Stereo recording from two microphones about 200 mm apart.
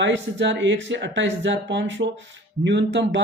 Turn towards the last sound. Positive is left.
turn(degrees=-65)  # may be behind; listen again after turning